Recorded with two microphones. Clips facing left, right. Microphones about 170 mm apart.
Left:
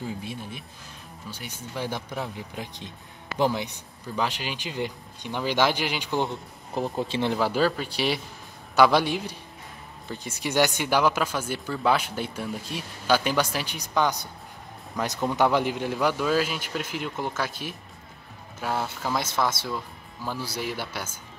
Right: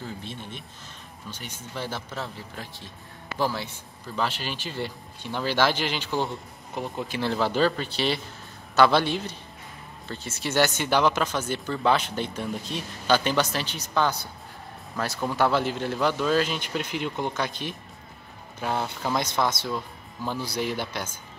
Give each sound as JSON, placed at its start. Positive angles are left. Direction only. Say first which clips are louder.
{"t": 0.0, "sound": "speech", "louder": "left 3 dB", "side_deg": 10}
{"t": 6.7, "sound": "speech", "louder": "left 4 dB", "side_deg": 30}
{"t": 7.3, "sound": "speech", "louder": "right 2 dB", "side_deg": 10}